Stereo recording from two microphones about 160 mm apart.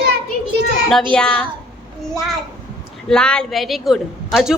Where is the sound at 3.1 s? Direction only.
5° left (ahead or behind).